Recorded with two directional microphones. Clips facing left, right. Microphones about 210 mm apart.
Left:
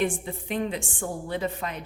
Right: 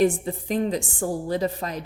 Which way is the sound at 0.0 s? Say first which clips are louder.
Right 6 dB; 35° right (ahead or behind).